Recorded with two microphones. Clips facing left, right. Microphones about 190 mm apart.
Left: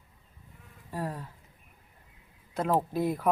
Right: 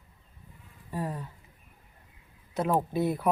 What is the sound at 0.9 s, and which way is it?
Speech, 5° left (ahead or behind).